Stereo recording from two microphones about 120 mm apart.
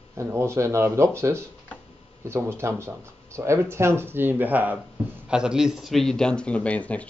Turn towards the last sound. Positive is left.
turn(degrees=10)  # may be behind; listen again after turning